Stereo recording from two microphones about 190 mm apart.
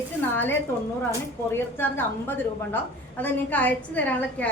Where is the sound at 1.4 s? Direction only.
10° left (ahead or behind).